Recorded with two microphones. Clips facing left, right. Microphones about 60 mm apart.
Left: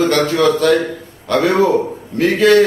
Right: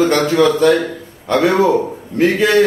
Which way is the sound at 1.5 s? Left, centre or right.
Right.